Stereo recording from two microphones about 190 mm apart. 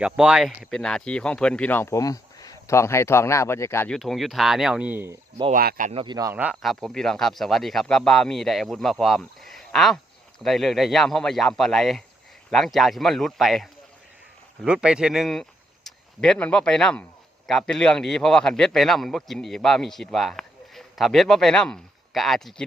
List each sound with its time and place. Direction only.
0.0 s speech: 5° right (ahead or behind); by 3.9 s 15° left (ahead or behind)
3.9 s speech: centre (ahead or behind)
5.5 s speech: 50° right (ahead or behind)
5.9 s speech: 30° right (ahead or behind)
6.3 s speech: 5° right (ahead or behind)